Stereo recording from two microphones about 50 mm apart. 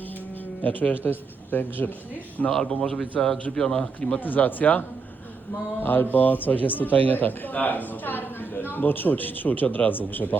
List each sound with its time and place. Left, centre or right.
0.6 s speech: left
2.5 s speech: centre
4.2 s speech: left